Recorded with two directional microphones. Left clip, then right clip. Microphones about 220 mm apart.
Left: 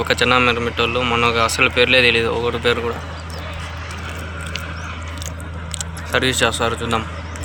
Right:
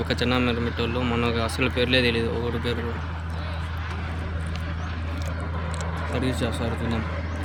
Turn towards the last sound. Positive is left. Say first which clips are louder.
# left 10 dB
turn(degrees=0)  # may be behind; listen again after turning